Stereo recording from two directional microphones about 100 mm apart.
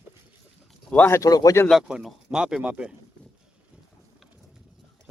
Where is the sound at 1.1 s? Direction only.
35° left (ahead or behind).